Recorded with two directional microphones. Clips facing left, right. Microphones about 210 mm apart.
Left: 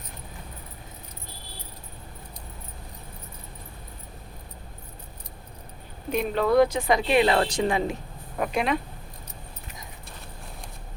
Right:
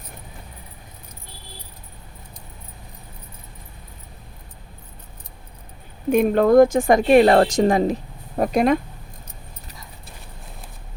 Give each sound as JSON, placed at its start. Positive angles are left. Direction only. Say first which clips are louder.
{"t": 6.1, "sound": "speech", "louder": "right 8 dB", "side_deg": -50}